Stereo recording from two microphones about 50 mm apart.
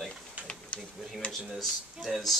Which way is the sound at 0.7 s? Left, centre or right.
Left.